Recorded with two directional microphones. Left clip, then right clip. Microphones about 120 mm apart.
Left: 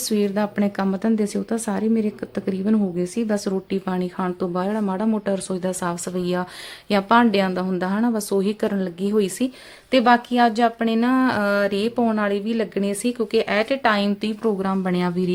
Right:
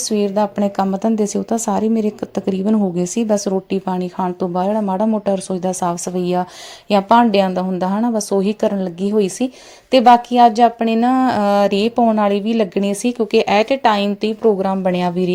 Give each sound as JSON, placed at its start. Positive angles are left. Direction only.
{"t": 0.1, "sound": "speech", "side_deg": -20}